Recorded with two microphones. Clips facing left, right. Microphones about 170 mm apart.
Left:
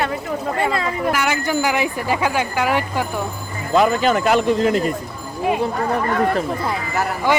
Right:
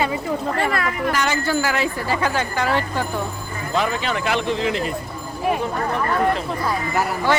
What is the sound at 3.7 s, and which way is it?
Speech, 45° left (ahead or behind).